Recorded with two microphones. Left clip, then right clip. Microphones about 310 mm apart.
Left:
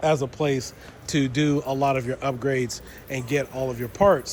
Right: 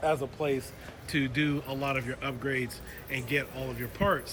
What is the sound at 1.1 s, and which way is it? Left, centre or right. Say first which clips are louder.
A man's voice: left 6 dB; centre.